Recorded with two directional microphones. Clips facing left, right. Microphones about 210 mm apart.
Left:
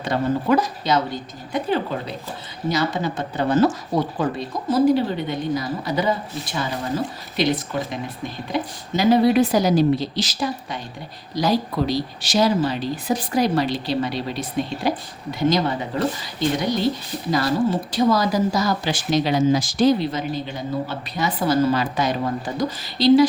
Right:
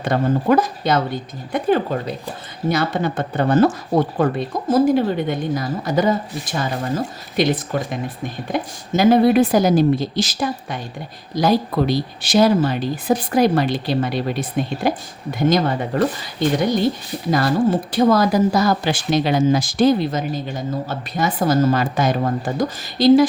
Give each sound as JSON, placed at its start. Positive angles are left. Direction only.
{"t": 0.0, "sound": "speech", "side_deg": -50}
{"t": 17.3, "sound": "speech", "side_deg": -55}